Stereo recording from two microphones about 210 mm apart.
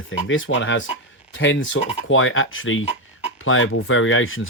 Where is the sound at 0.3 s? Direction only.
65° left (ahead or behind).